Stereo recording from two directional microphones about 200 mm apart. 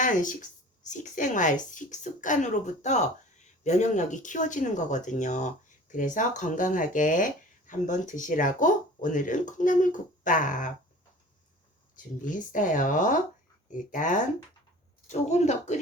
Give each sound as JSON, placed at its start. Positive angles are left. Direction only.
{"t": 0.0, "sound": "speech", "side_deg": 40}
{"t": 12.2, "sound": "speech", "side_deg": 40}